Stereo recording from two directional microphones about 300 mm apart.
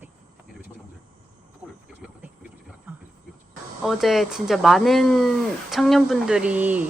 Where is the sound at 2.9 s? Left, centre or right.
Centre.